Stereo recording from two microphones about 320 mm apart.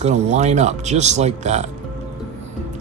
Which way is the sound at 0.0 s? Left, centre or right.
Right.